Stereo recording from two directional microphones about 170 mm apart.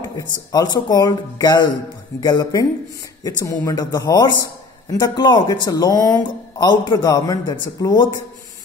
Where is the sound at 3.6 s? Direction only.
25° left (ahead or behind).